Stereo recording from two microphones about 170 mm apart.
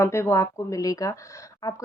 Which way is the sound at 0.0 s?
15° left (ahead or behind).